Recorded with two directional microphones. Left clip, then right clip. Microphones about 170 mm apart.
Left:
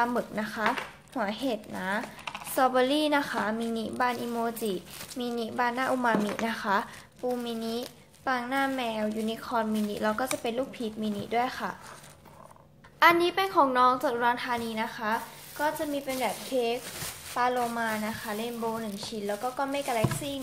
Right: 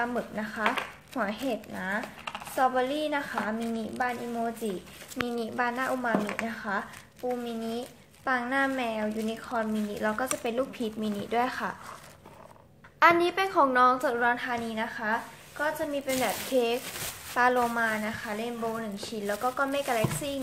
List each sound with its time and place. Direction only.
0.0 s a woman's voice: 20° left (ahead or behind)
0.7 s a woman's voice: 5° left (ahead or behind); by 4.7 s 30° left (ahead or behind)
5.3 s speech: 5° left (ahead or behind)
6.4 s speech: 30° left (ahead or behind)
7.4 s a woman's voice: 15° left (ahead or behind); by 11.7 s centre (ahead or behind)
13.0 s a woman's voice: 5° left (ahead or behind)
17.3 s a woman's voice: 15° right (ahead or behind)